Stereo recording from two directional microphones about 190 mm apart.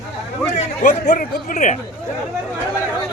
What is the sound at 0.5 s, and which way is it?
Speech, 40° left (ahead or behind).